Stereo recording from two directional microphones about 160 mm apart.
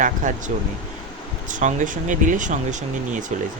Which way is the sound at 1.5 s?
55° right (ahead or behind).